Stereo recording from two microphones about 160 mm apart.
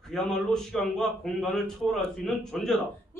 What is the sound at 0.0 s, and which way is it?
A man's voice, 5° left (ahead or behind).